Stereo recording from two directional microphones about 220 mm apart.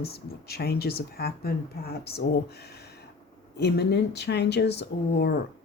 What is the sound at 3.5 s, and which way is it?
Speech, 50° left (ahead or behind).